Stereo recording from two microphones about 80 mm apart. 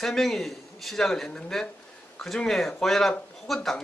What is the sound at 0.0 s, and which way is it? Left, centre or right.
Speech, centre.